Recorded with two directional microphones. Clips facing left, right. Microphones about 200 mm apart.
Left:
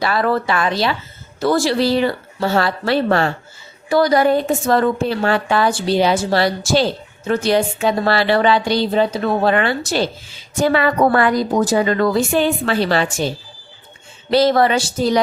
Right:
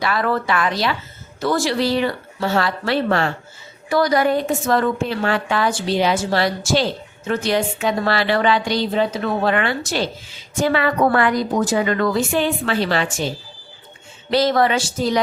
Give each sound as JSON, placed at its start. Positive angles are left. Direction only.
{"t": 0.0, "sound": "a woman's voice", "side_deg": 30}
{"t": 14.3, "sound": "a woman's voice", "side_deg": 30}